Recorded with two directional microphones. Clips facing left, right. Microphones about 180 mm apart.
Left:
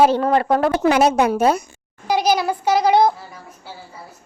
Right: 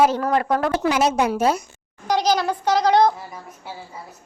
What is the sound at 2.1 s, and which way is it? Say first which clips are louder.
Speech: left 2 dB; 10° left (ahead or behind).